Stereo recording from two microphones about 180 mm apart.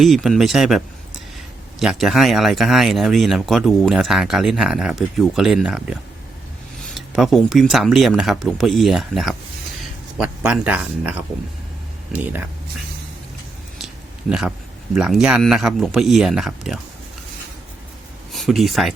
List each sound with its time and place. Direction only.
0.0 s speech: centre (ahead or behind)
1.8 s speech: centre (ahead or behind)
13.7 s a sound: centre (ahead or behind)
14.9 s speech: 5° right (ahead or behind)
18.3 s speech: centre (ahead or behind)